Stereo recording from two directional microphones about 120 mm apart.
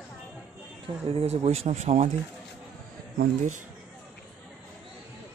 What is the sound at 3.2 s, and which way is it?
Speech, 90° right.